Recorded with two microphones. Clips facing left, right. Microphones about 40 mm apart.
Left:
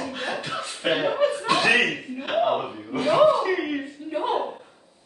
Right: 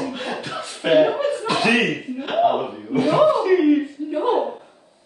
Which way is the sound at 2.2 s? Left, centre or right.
Centre.